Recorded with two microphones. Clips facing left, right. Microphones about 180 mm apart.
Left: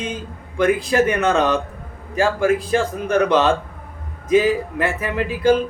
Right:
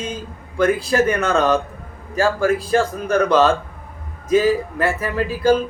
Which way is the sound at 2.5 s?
35° right (ahead or behind).